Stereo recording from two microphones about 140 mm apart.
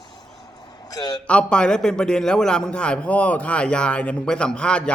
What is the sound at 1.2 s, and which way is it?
A man's voice, 5° left (ahead or behind).